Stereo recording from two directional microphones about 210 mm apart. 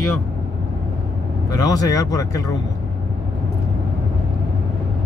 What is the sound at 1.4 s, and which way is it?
Speech, 15° left (ahead or behind).